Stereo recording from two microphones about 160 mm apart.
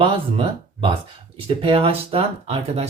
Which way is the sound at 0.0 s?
35° right (ahead or behind).